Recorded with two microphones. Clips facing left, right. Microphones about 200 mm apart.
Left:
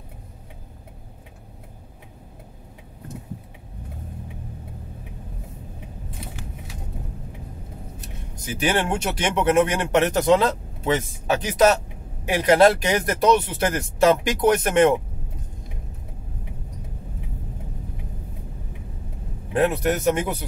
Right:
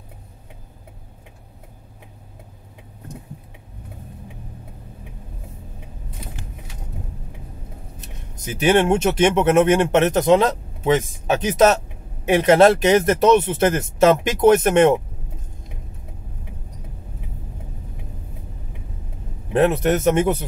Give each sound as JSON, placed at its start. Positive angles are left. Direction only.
{"t": 8.5, "sound": "speech", "side_deg": -25}
{"t": 19.5, "sound": "speech", "side_deg": -25}